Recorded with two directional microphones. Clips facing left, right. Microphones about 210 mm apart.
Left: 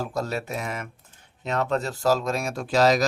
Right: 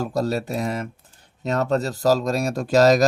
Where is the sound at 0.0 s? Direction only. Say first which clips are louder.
Right 5 dB; 40° right (ahead or behind).